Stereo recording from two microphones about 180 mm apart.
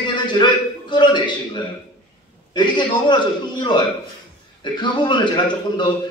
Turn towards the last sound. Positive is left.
turn(degrees=25)  # may be behind; listen again after turning